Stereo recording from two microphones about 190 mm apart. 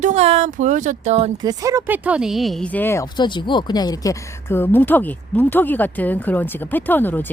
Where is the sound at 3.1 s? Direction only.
25° left (ahead or behind).